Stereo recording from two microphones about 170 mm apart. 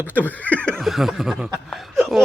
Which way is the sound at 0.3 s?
10° left (ahead or behind).